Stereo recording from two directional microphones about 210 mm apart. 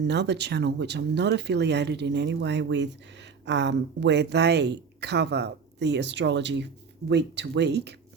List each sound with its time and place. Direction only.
0.0 s speech: 55° right (ahead or behind)